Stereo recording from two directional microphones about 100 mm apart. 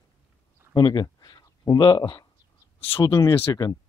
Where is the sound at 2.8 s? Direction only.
70° left (ahead or behind).